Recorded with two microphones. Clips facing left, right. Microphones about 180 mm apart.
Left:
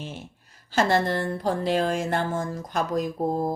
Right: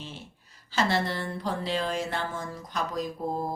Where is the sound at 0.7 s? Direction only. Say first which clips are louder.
Left 5 dB; 50° left (ahead or behind).